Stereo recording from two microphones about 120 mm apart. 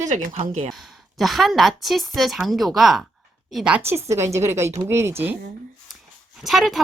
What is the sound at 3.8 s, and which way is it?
A woman's voice, 20° right (ahead or behind).